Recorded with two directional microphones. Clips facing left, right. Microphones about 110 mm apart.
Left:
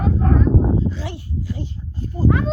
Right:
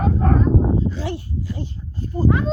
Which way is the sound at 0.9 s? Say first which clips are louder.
Right 3 dB; 40° right (ahead or behind).